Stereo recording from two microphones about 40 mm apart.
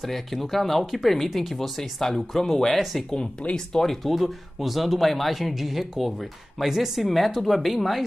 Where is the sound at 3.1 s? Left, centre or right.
Left.